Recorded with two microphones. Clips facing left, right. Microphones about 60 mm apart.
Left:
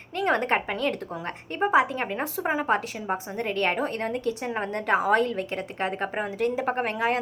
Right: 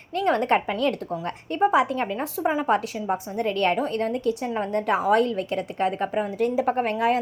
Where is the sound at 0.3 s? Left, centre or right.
Centre.